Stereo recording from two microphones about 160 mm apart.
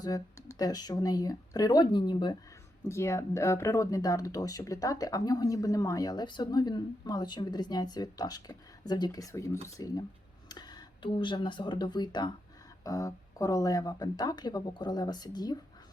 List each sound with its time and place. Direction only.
0.0 s speech: 20° left (ahead or behind)
2.9 s speech: 15° left (ahead or behind)